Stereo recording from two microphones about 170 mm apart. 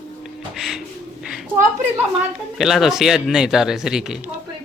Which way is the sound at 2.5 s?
Centre (ahead or behind).